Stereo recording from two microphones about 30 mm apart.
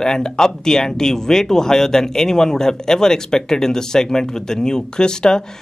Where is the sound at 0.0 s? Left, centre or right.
Left.